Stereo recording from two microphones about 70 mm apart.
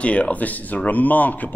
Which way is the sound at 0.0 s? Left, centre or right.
Centre.